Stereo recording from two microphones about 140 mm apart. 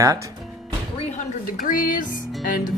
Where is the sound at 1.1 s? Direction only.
80° left.